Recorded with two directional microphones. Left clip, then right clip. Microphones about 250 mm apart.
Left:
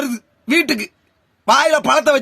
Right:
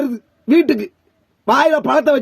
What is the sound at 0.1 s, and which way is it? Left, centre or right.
Throat clearing, centre.